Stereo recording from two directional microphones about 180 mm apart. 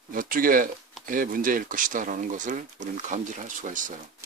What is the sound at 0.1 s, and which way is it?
Speech, 50° right (ahead or behind).